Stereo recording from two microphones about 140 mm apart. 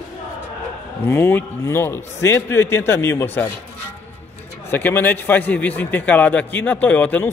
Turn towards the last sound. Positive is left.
turn(degrees=10)  # may be behind; listen again after turning